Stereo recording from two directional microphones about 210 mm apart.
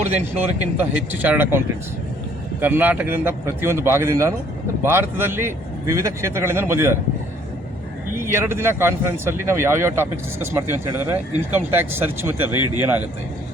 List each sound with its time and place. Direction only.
0.6 s speech: 10° right (ahead or behind)
8.2 s speech: 10° right (ahead or behind)
12.5 s a man's voice: 90° right
12.8 s speech: 10° right (ahead or behind)